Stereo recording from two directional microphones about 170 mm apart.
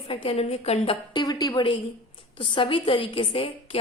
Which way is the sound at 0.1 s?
35° left (ahead or behind).